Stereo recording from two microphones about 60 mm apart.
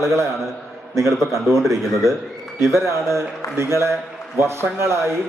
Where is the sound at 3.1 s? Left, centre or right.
Right.